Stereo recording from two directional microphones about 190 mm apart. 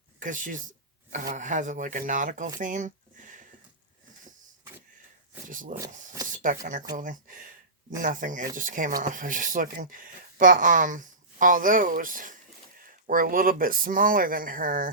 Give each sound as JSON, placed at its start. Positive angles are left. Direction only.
{"t": 0.2, "sound": "speech", "side_deg": -45}
{"t": 2.6, "sound": "a sound", "side_deg": -40}
{"t": 5.5, "sound": "speech", "side_deg": -45}